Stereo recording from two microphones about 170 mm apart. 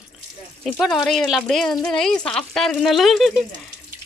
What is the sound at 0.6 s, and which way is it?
Speech, centre (ahead or behind).